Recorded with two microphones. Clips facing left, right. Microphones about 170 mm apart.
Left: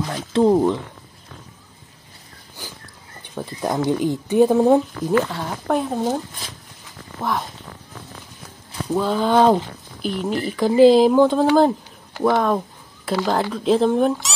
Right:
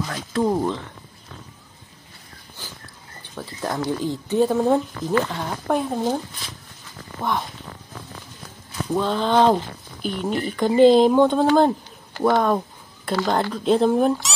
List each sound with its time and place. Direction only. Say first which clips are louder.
0.1 s speech: left 7 dB; 25° left (ahead or behind)
3.3 s speech: left 4 dB; 20° left (ahead or behind)
5.3 s speech: left 1 dB; centre (ahead or behind)
8.9 s speech: left 2 dB; 5° left (ahead or behind)